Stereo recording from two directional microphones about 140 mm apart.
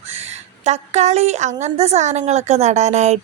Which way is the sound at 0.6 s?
50° right (ahead or behind).